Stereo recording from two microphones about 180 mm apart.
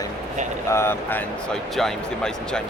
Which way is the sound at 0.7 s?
15° left (ahead or behind).